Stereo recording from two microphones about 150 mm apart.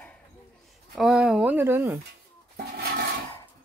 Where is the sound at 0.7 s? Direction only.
5° right (ahead or behind).